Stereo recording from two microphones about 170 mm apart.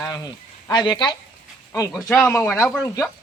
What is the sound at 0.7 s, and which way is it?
A man's voice, 25° left (ahead or behind).